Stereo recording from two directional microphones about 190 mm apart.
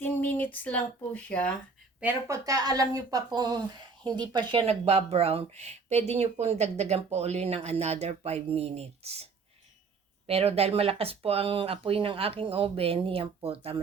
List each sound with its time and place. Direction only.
0.0 s speech: 10° left (ahead or behind)
2.0 s speech: 10° right (ahead or behind); by 13.7 s 30° right (ahead or behind)